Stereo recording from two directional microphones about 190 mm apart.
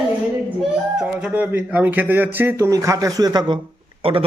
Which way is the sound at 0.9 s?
5° right (ahead or behind).